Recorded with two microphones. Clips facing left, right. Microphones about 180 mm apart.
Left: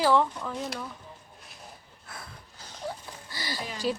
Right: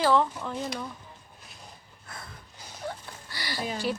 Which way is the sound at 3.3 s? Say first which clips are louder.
Left 1 dB; 20° left (ahead or behind).